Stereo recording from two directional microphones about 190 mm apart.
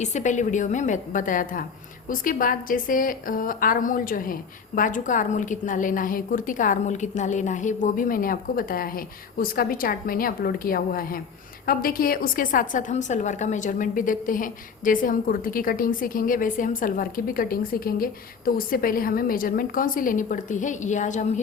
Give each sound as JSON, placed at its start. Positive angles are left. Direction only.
{"t": 0.0, "sound": "a woman's voice", "side_deg": 40}